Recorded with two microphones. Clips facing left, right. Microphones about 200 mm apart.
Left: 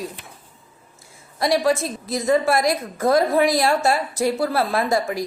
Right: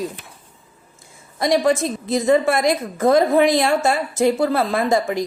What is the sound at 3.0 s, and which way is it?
Speech, 50° right (ahead or behind).